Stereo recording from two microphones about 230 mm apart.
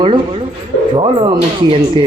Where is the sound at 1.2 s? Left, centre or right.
Right.